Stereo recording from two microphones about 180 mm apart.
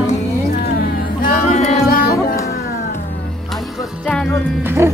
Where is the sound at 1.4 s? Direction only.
40° left (ahead or behind).